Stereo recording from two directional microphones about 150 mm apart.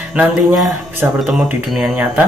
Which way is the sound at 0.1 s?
10° right (ahead or behind).